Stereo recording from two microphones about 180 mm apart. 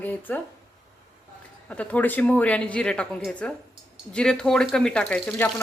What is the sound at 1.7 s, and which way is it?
Speech, 10° left (ahead or behind).